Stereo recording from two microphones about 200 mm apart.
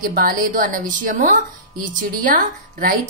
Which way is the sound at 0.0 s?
45° right (ahead or behind).